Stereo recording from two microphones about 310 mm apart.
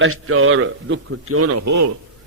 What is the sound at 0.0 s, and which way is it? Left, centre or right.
A man's voice, right.